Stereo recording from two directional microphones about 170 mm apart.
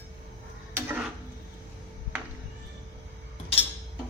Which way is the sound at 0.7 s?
10° right (ahead or behind).